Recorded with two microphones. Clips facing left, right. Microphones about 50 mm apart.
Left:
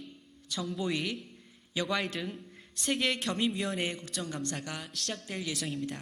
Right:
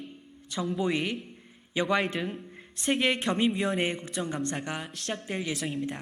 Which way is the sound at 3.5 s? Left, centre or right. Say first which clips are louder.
Right 5 dB; centre.